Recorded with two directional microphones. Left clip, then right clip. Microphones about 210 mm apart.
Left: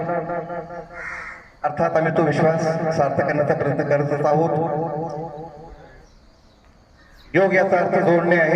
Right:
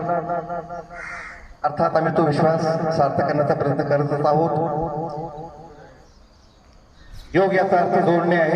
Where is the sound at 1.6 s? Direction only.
20° left (ahead or behind).